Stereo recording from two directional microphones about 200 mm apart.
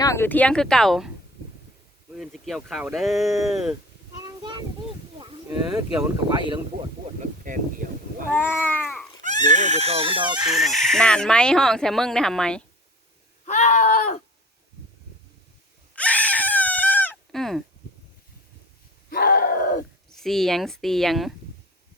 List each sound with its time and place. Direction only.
0.0 s speech: 15° left (ahead or behind)
2.1 s speech: centre (ahead or behind)
4.2 s a sound: 20° right (ahead or behind)
5.5 s speech: 15° right (ahead or behind)
7.2 s speech: 40° right (ahead or behind)
8.3 s cat: 10° left (ahead or behind)
9.2 s speech: 35° right (ahead or behind)
10.4 s speech: centre (ahead or behind)
13.4 s a sound: 35° left (ahead or behind)
16.0 s a sound: 5° left (ahead or behind)
19.1 s groan: 45° left (ahead or behind)
20.1 s speech: centre (ahead or behind)